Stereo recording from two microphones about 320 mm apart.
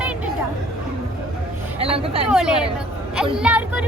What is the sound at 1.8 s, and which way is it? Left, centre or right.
Vehicle, centre.